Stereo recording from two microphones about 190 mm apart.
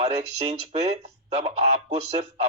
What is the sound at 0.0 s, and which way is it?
A man's voice, 30° right (ahead or behind).